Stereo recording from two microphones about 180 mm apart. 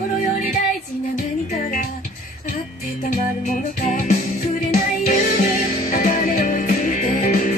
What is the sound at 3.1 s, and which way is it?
Music, 50° left (ahead or behind).